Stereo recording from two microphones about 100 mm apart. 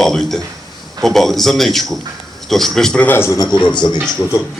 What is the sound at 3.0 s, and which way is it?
Speech, 20° left (ahead or behind).